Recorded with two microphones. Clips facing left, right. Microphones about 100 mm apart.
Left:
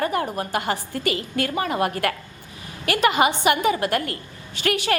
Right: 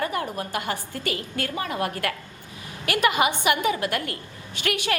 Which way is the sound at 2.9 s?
45° left (ahead or behind).